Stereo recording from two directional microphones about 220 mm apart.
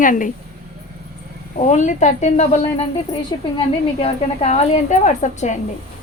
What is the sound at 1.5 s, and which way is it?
Speech, 35° left (ahead or behind).